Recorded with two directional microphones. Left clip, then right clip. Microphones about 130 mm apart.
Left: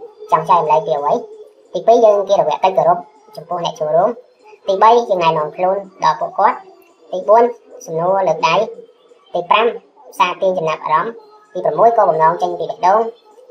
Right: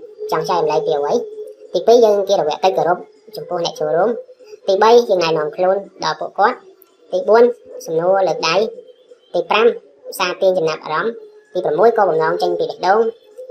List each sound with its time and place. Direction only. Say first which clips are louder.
0.3 s a woman's voice: left 5 dB; 30° right (ahead or behind)